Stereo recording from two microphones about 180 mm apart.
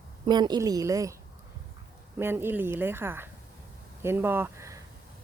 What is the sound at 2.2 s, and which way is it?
A woman's voice, 15° right (ahead or behind).